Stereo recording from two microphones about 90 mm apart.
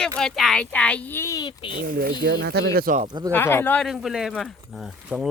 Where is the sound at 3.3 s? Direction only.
25° left (ahead or behind).